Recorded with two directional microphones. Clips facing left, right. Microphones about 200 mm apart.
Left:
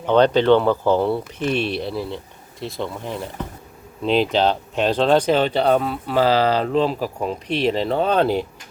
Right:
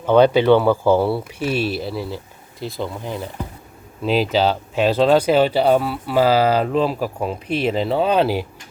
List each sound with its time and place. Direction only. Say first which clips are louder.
0.0 s speech: right 2 dB; 10° right (ahead or behind)